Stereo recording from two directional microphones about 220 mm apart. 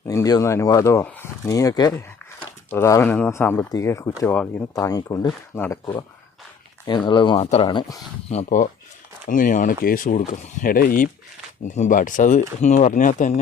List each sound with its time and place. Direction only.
0.1 s speech: 15° left (ahead or behind); by 13.4 s 35° left (ahead or behind)